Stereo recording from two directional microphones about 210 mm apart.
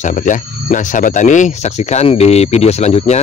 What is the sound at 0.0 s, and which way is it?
Speech, 35° left (ahead or behind).